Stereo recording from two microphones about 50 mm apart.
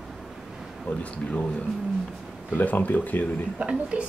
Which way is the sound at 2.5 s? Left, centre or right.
Left.